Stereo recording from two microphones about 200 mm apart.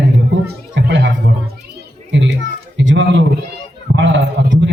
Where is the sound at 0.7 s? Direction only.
60° right (ahead or behind).